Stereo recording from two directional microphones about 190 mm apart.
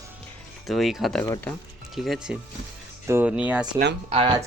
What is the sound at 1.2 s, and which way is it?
Speech, 20° left (ahead or behind).